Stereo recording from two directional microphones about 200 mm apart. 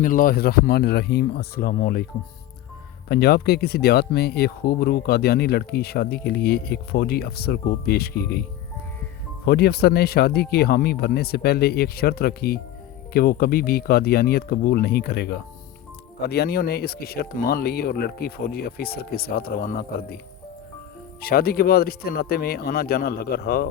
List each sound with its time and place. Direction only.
0.0 s speech: 45° left (ahead or behind)
3.1 s speech: 55° left (ahead or behind)
9.5 s speech: 50° left (ahead or behind)
21.2 s speech: 50° left (ahead or behind)